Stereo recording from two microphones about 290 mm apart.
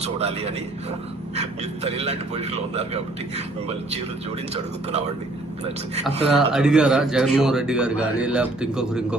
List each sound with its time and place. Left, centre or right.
0.0 s a man's voice: right
6.2 s a man's voice: centre